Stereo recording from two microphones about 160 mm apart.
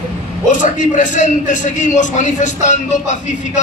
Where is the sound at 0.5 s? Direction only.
50° left (ahead or behind).